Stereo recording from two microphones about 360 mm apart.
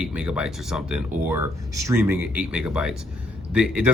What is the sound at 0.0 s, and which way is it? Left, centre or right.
Speech, centre.